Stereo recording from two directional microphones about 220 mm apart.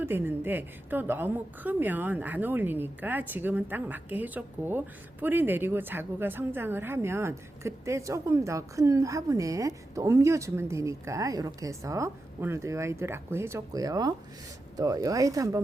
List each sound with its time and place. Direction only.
0.0 s a woman's voice: 10° right (ahead or behind)